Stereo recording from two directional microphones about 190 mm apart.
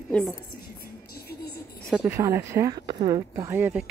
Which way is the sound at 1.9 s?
10° right (ahead or behind).